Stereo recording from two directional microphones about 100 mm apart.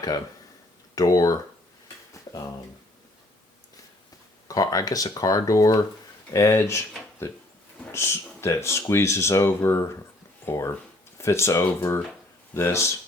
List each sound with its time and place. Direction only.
0.9 s speech: 35° left (ahead or behind)
4.4 s speech: 35° left (ahead or behind)